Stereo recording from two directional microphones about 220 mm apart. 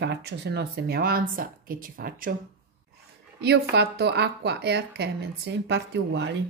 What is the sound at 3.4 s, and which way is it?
Speech, 50° right (ahead or behind).